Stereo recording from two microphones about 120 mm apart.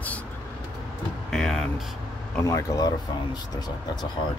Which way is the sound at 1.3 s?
5° left (ahead or behind).